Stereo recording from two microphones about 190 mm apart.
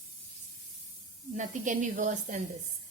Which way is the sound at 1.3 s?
40° right (ahead or behind).